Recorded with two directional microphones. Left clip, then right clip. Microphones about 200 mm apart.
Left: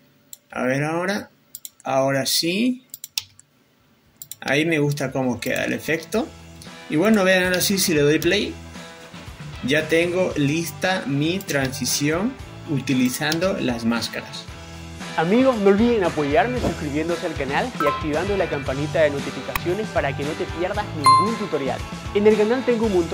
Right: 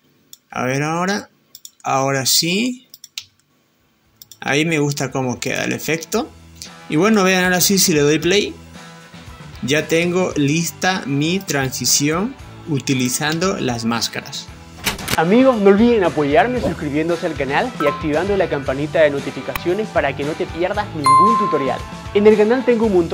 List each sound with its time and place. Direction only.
0.5 s speech: 45° right (ahead or behind)
4.4 s speech: 45° right (ahead or behind)
9.7 s speech: 45° right (ahead or behind)
15.1 s speech: centre (ahead or behind)